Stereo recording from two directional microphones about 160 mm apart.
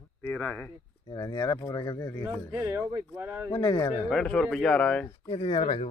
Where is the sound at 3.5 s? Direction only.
25° left (ahead or behind).